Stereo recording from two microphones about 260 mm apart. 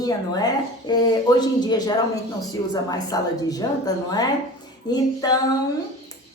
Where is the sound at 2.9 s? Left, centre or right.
Centre.